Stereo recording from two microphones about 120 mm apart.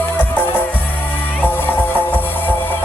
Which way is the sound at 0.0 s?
15° left (ahead or behind).